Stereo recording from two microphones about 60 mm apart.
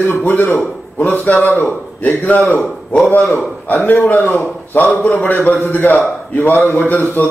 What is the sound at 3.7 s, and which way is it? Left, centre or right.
A man's voice, left.